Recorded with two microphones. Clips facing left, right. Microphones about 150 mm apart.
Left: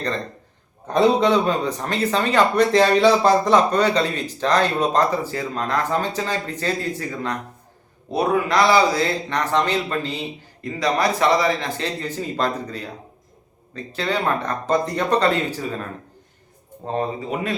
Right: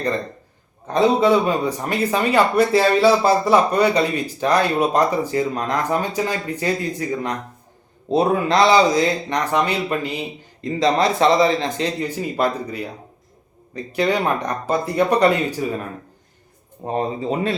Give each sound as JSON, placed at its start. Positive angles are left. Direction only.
{"t": 0.9, "sound": "speech", "side_deg": -10}
{"t": 10.8, "sound": "speech", "side_deg": -25}